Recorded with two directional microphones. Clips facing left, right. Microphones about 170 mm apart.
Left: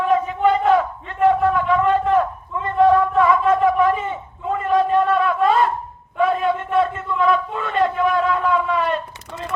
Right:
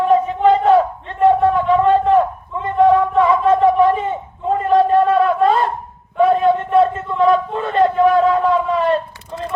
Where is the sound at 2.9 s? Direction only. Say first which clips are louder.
Right 2 dB; 15° right (ahead or behind).